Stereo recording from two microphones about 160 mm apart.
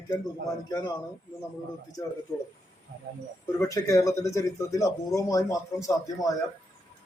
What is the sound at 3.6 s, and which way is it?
Speech, 20° left (ahead or behind).